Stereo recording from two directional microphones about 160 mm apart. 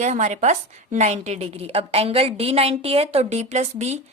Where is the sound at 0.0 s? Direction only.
45° right (ahead or behind).